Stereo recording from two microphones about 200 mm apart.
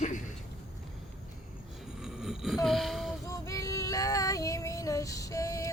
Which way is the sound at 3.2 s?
15° left (ahead or behind).